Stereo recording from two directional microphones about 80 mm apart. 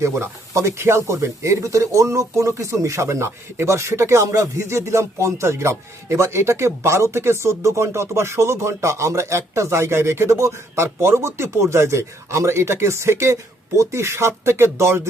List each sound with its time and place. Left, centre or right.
0.0 s speech: right